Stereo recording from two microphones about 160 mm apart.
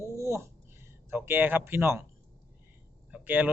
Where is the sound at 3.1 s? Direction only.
10° right (ahead or behind).